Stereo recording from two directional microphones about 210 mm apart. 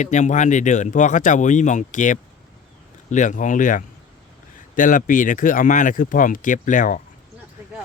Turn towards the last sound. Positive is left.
turn(degrees=40)  # may be behind; listen again after turning